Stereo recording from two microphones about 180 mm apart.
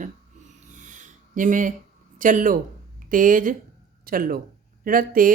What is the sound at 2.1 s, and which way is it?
Speech, 45° right (ahead or behind).